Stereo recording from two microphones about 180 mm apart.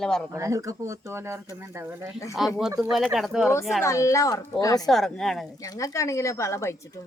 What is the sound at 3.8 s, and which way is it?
Speech, 15° left (ahead or behind).